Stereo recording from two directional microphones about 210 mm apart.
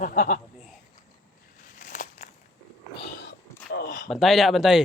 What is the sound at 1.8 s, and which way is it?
Crackle, 40° left (ahead or behind).